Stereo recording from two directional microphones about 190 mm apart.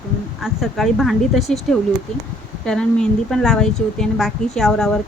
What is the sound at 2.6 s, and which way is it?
Speech, 5° left (ahead or behind).